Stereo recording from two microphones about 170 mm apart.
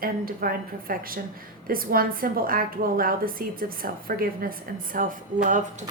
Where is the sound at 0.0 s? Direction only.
55° right (ahead or behind).